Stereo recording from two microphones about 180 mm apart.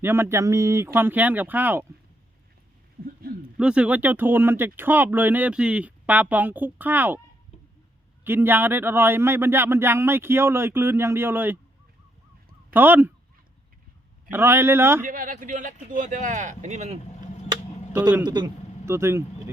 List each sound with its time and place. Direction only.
0.0 s speech: 15° right (ahead or behind)
3.6 s speech: 5° right (ahead or behind)
8.2 s speech: 10° right (ahead or behind)
12.7 s speech: 10° right (ahead or behind)
14.3 s speech: 15° right (ahead or behind)
15.0 s speech: 50° right (ahead or behind)
18.3 s speech: 25° right (ahead or behind)